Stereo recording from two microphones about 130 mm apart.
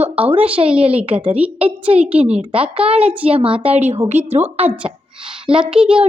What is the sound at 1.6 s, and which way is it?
Speech, 50° right (ahead or behind).